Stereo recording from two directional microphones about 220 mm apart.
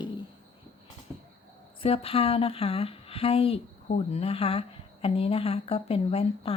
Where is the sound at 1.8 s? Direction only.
25° left (ahead or behind).